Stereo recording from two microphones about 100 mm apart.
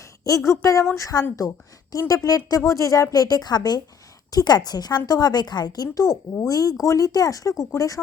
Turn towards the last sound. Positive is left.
turn(degrees=35)  # may be behind; listen again after turning